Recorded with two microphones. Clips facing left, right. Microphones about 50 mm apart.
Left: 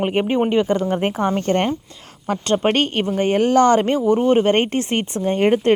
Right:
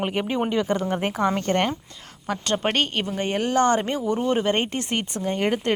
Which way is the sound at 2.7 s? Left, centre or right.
Left.